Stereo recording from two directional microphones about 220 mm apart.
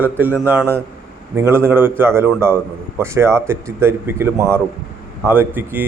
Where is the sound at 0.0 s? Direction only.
10° right (ahead or behind).